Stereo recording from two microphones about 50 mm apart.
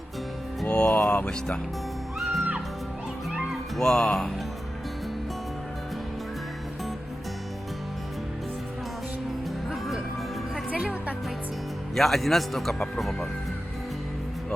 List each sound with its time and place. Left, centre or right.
0.7 s music: left
2.1 s music: centre
3.8 s speech: centre
9.6 s music: centre
10.8 s music: right
11.9 s a man's voice: centre